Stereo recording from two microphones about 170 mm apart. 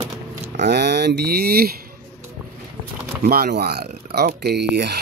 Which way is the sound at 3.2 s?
60° right (ahead or behind).